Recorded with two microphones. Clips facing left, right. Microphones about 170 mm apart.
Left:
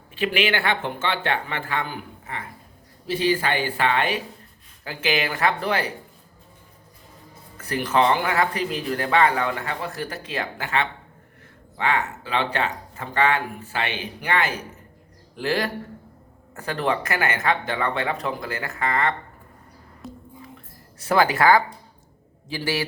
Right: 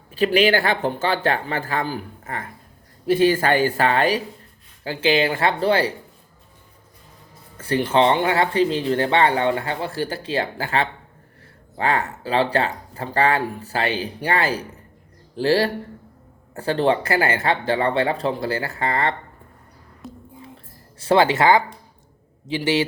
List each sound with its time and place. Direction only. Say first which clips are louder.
0.1 s speech: right 6 dB; 40° right (ahead or behind)
7.6 s speech: right 3 dB; 30° right (ahead or behind)
20.0 s a sound: even; centre (ahead or behind)
21.0 s speech: right 3 dB; 25° right (ahead or behind)